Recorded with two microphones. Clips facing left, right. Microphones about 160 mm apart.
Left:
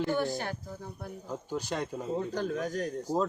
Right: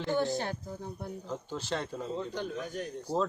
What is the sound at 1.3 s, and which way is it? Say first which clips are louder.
Speech: left 2 dB; 10° left (ahead or behind).